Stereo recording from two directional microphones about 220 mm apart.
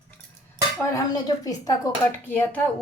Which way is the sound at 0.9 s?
15° left (ahead or behind).